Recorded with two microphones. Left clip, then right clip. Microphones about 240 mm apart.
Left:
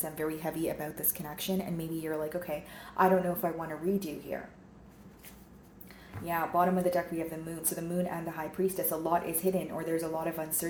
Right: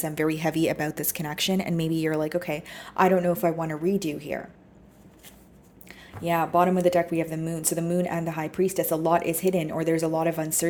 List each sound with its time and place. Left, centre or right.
0.0 s speech: right
6.2 s speech: right